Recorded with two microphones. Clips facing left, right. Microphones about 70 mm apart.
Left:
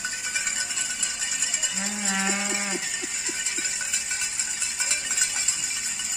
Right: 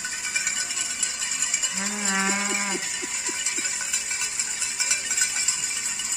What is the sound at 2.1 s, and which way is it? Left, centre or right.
Livestock, centre.